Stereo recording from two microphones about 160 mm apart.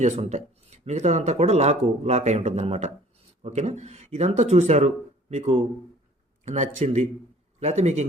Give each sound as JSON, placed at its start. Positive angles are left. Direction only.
{"t": 0.0, "sound": "speech", "side_deg": -45}